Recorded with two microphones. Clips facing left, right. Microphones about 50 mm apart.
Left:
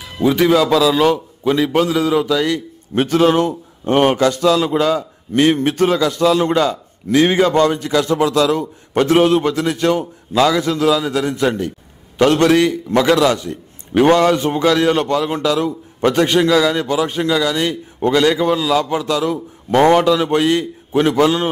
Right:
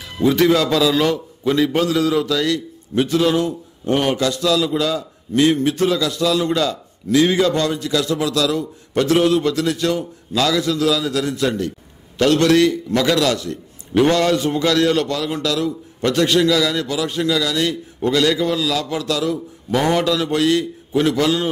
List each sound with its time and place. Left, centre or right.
0.2 s a man's voice: centre
2.9 s a man's voice: left